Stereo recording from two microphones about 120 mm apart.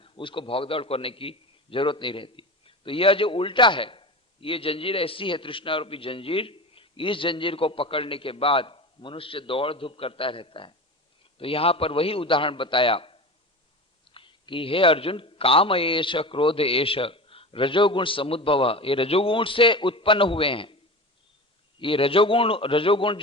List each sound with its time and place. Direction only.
0.0 s a man's voice: 45° left (ahead or behind)
21.8 s a man's voice: 45° left (ahead or behind)